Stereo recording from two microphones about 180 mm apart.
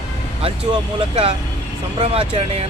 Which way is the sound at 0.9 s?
35° right (ahead or behind).